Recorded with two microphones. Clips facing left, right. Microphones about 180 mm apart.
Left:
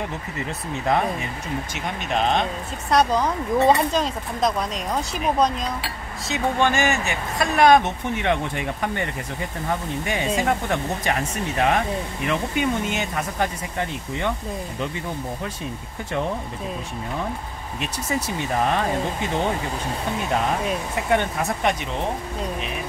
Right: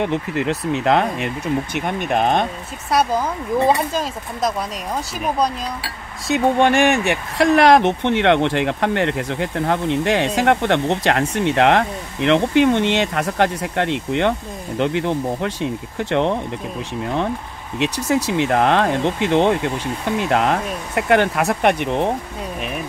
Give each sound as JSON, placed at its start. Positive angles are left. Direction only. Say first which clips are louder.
{"t": 0.0, "sound": "speech", "louder": "right 9 dB", "side_deg": -75}
{"t": 2.9, "sound": "speech", "louder": "right 1 dB", "side_deg": -5}
{"t": 6.2, "sound": "speech", "louder": "right 6 dB", "side_deg": -60}
{"t": 17.7, "sound": "speech", "louder": "right 8 dB", "side_deg": -80}